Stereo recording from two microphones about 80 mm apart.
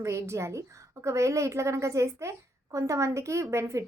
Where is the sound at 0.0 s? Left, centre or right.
Right.